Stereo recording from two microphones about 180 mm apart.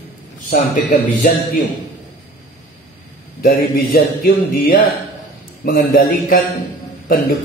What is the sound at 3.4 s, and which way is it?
Speech, 55° left (ahead or behind).